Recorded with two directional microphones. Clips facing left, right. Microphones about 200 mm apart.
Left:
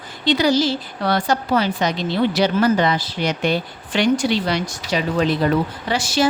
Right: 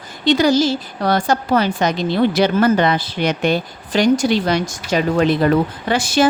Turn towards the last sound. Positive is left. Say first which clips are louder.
# right 3 dB
turn(degrees=-55)  # may be behind; listen again after turning